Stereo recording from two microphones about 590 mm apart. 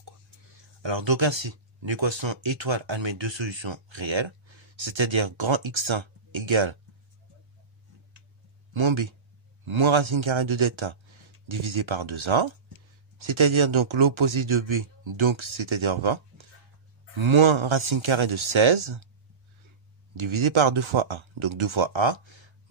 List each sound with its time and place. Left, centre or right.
0.0 s speech: right
8.7 s speech: right
20.2 s speech: right